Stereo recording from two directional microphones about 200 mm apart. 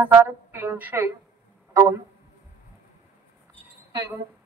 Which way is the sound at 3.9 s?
20° right (ahead or behind).